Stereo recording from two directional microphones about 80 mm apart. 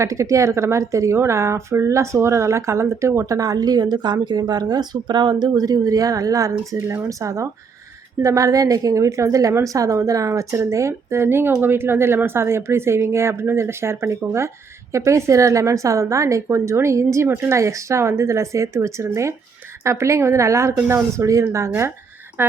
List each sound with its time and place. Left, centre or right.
0.0 s a woman's voice: right
22.4 s speech: right